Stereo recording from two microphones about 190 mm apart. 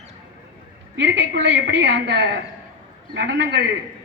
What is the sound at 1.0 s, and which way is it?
A woman's voice, 70° right (ahead or behind).